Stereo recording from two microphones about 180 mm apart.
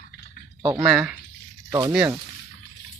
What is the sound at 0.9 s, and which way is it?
Speech, 5° right (ahead or behind).